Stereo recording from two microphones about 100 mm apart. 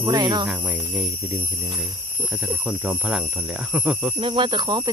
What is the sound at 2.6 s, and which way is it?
Speech, 10° right (ahead or behind).